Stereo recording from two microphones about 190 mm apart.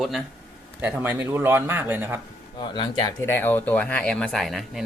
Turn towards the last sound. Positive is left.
turn(degrees=0)  # may be behind; listen again after turning